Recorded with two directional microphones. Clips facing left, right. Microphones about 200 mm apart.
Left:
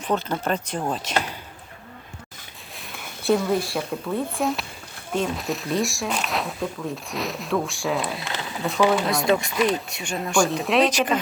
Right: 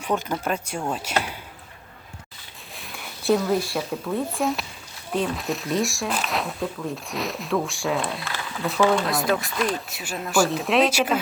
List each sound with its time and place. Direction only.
0.0 s speech: 10° right (ahead or behind)
2.7 s speech: centre (ahead or behind)
8.2 s a sound: 20° left (ahead or behind)
8.9 s speech: centre (ahead or behind)